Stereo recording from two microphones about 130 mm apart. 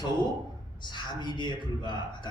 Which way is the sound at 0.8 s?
35° left (ahead or behind).